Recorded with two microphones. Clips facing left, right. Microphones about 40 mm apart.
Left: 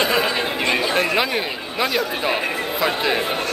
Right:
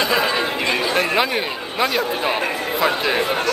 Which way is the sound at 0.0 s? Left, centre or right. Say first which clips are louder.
Even; centre.